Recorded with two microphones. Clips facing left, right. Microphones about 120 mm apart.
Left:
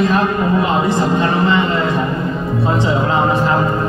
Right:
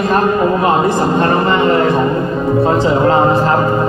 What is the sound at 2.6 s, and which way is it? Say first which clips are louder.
Speech: right 4 dB; 40° right (ahead or behind).